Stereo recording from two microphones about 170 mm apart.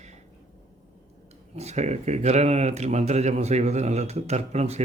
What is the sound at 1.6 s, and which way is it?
A man's voice, 40° right (ahead or behind).